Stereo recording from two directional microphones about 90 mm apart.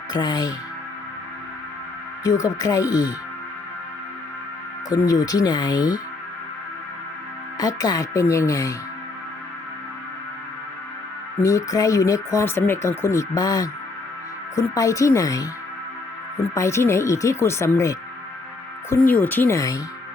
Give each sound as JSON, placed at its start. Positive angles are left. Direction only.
{"t": 0.1, "sound": "speech", "side_deg": 50}
{"t": 2.2, "sound": "speech", "side_deg": 40}
{"t": 5.0, "sound": "speech", "side_deg": 45}
{"t": 7.6, "sound": "speech", "side_deg": 45}
{"t": 11.4, "sound": "speech", "side_deg": 35}
{"t": 16.6, "sound": "speech", "side_deg": 30}
{"t": 19.0, "sound": "speech", "side_deg": 20}
{"t": 19.5, "sound": "speech", "side_deg": 40}